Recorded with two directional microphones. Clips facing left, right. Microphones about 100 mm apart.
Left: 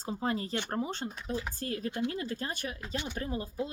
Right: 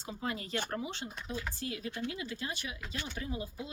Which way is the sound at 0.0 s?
35° left (ahead or behind).